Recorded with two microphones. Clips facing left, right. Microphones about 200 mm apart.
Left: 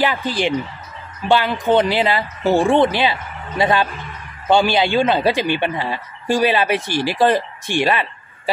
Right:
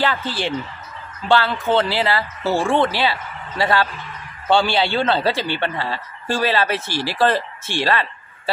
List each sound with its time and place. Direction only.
0.0 s speech: 15° left (ahead or behind)